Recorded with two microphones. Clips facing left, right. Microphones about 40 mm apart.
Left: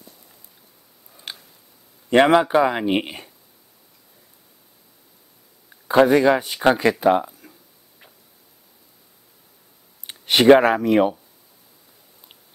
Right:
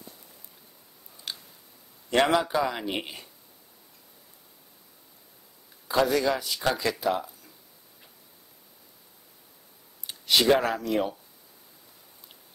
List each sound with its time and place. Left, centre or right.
1.3 s a sound: left
2.0 s speech: left
5.9 s speech: left
10.0 s speech: left